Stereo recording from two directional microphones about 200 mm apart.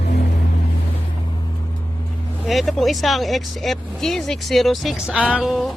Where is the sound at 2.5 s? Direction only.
Centre (ahead or behind).